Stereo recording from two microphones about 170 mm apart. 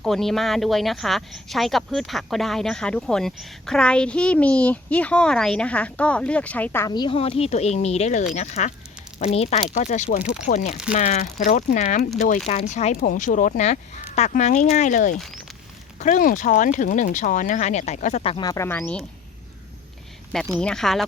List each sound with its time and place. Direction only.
0.0 s speech: centre (ahead or behind)
6.8 s speech: 25° left (ahead or behind); by 19.0 s 5° left (ahead or behind)
20.6 s speech: 5° left (ahead or behind)